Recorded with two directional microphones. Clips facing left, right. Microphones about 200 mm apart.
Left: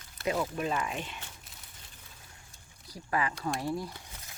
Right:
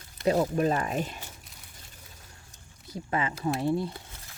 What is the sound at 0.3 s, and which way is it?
Speech, 40° right (ahead or behind).